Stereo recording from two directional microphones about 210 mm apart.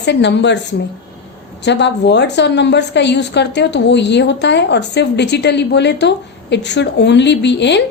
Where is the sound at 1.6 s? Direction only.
55° left (ahead or behind).